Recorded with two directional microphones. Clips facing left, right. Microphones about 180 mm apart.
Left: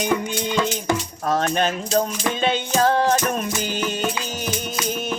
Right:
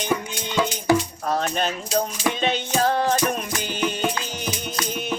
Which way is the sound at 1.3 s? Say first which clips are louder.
Left 3 dB; 45° left (ahead or behind).